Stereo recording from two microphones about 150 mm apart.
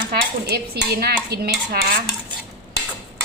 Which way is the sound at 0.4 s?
90° right.